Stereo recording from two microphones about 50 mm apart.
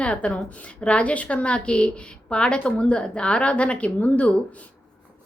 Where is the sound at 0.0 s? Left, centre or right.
Left.